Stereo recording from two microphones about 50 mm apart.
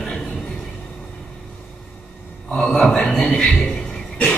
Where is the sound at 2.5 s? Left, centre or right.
Centre.